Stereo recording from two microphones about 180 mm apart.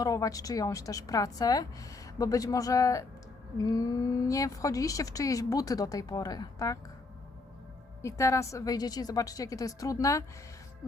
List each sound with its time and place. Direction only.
0.0 s a woman's voice: 20° left (ahead or behind)
8.0 s a woman's voice: 15° left (ahead or behind)